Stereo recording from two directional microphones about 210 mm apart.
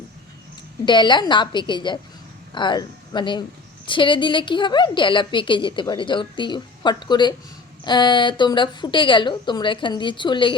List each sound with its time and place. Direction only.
0.9 s a woman's voice: 20° left (ahead or behind)